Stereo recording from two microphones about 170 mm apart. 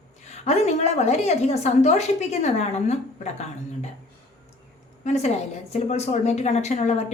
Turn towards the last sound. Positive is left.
turn(degrees=40)  # may be behind; listen again after turning